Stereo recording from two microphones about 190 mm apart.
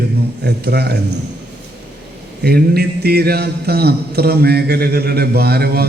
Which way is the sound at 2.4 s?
55° right (ahead or behind).